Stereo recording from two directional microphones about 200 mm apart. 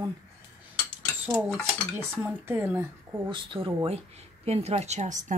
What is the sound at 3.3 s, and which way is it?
Speech, 25° right (ahead or behind).